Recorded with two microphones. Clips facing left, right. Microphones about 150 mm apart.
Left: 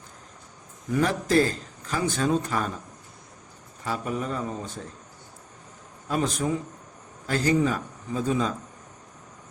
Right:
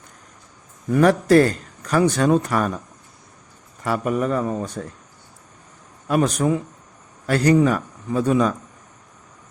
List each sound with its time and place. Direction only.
0.9 s speech: 65° right (ahead or behind)
3.8 s speech: 65° right (ahead or behind)
6.1 s speech: 70° right (ahead or behind)